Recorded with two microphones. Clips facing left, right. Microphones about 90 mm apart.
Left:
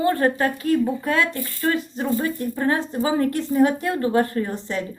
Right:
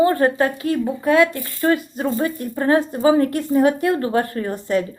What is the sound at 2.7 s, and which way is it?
Speech, 10° right (ahead or behind).